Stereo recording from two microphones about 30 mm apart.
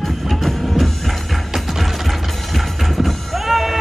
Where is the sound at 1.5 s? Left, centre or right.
Centre.